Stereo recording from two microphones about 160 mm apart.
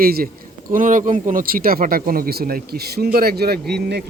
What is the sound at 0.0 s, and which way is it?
Speech, 70° right (ahead or behind).